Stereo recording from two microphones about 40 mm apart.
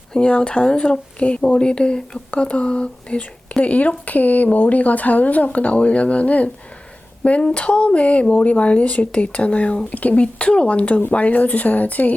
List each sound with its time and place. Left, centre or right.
0.1 s speech: left